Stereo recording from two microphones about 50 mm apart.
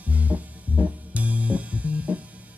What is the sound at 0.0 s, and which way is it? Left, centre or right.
Music, right.